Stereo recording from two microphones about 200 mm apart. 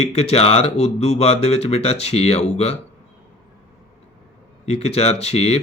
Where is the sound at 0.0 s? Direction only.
30° left (ahead or behind).